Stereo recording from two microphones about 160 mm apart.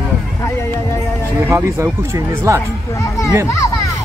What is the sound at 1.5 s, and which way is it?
Speech, 20° right (ahead or behind).